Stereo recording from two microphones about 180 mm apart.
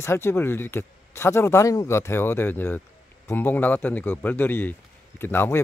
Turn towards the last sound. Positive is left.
turn(degrees=10)  # may be behind; listen again after turning